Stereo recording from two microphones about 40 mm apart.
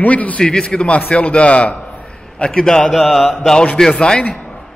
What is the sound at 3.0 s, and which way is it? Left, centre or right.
Mantra, centre.